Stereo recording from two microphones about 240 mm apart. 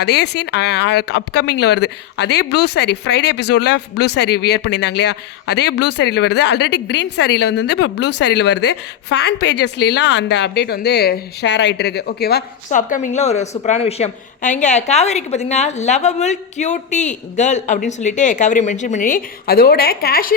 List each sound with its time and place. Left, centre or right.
0.0 s speech: left